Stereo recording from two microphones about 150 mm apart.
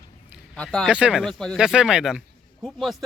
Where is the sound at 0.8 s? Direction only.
5° right (ahead or behind).